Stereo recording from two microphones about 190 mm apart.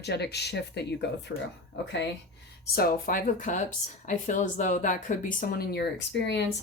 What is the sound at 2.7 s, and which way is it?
Speech, 50° left (ahead or behind).